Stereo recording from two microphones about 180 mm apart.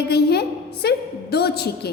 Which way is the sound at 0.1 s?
65° left (ahead or behind).